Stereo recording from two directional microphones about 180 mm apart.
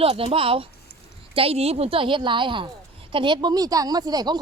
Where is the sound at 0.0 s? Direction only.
30° right (ahead or behind).